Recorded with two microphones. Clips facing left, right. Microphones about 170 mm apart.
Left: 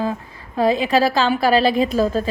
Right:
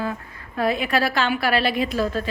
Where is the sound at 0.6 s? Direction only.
90° left.